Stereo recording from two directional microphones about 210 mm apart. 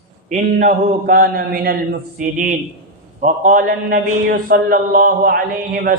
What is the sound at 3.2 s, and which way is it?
Mantra, 40° right (ahead or behind).